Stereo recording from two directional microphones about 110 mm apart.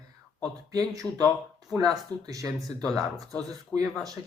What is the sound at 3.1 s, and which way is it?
Speech, 35° right (ahead or behind).